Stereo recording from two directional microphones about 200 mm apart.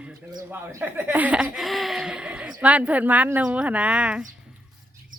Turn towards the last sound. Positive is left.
turn(degrees=-5)  # may be behind; listen again after turning